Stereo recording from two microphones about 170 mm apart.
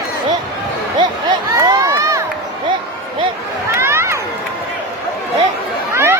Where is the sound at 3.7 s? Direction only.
15° right (ahead or behind).